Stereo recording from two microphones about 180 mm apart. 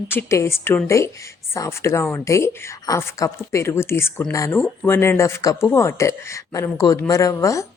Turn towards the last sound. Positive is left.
turn(degrees=15)  # may be behind; listen again after turning